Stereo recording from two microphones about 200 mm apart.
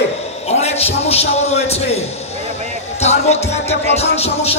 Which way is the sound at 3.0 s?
35° left (ahead or behind).